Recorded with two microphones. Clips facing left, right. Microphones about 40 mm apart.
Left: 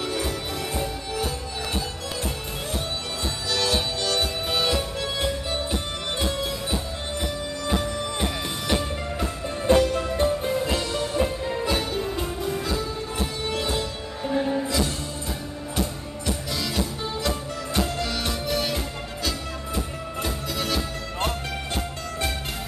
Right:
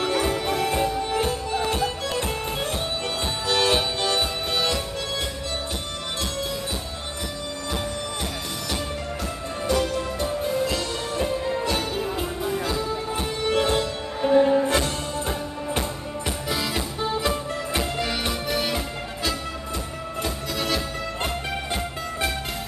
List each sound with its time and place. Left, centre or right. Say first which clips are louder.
0.0 s music: right 5 dB; right
3.4 s music: right 4 dB; right
4.0 s music: right 1 dB; centre
4.5 s music: left 1 dB; centre
8.2 s music: left 3 dB; centre
11.1 s music: right 2 dB; centre
13.5 s music: right 9 dB; right
15.7 s music: even; right; by 18.8 s centre
20.2 s music: right 1 dB; centre